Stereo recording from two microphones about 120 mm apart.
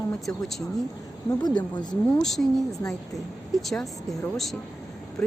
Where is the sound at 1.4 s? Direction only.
35° left (ahead or behind).